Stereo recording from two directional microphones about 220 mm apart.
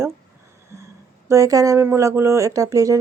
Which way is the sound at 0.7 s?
15° right (ahead or behind).